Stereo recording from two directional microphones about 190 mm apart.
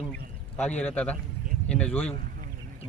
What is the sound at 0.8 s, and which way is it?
Speech, 5° left (ahead or behind).